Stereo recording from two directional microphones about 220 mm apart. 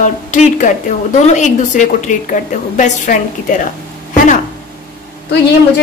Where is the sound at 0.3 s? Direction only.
35° left (ahead or behind).